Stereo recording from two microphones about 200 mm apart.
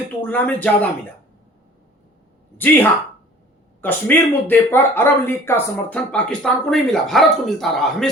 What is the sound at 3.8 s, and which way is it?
Speech, 10° left (ahead or behind).